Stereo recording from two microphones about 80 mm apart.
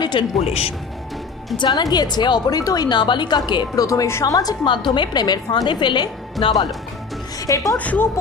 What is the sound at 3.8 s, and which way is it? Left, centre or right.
Speech, left.